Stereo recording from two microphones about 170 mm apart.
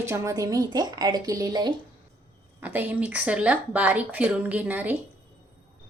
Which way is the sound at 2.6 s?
10° right (ahead or behind).